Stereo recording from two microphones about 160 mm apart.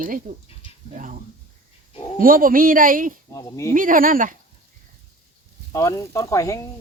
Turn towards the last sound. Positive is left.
turn(degrees=20)  # may be behind; listen again after turning